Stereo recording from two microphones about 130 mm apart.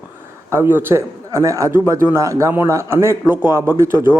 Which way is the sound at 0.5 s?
15° right (ahead or behind).